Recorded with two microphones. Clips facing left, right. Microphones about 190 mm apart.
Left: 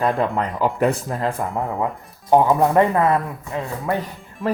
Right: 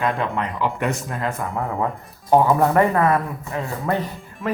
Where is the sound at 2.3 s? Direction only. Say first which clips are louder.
Left 1 dB; 15° left (ahead or behind).